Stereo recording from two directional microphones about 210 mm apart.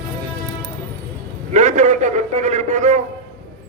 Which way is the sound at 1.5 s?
35° right (ahead or behind).